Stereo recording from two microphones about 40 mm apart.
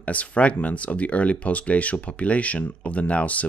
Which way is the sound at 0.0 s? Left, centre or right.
Left.